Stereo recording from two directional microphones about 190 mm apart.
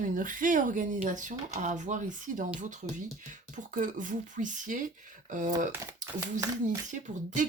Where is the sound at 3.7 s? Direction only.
45° right (ahead or behind).